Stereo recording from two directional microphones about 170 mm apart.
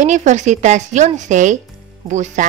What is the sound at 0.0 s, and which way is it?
Speech, 45° right (ahead or behind).